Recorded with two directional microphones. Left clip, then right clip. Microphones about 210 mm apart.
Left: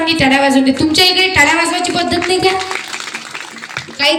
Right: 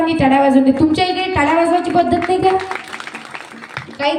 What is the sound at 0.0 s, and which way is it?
Music, 50° right (ahead or behind).